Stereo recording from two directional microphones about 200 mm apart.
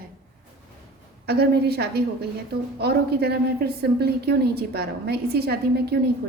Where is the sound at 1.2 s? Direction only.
55° right (ahead or behind).